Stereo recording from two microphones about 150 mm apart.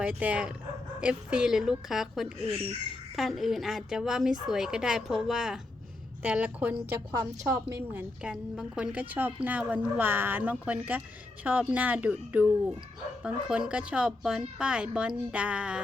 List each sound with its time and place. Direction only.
0.0 s a woman's voice: 10° right (ahead or behind)
8.2 s a woman's voice: 5° right (ahead or behind)